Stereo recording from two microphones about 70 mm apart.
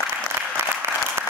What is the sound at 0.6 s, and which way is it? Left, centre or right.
Applause, right.